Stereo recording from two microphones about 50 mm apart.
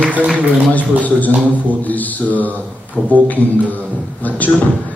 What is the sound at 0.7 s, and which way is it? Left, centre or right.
A man's voice, left.